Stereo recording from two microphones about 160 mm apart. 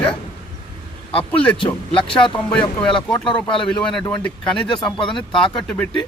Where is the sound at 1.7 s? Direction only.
5° left (ahead or behind).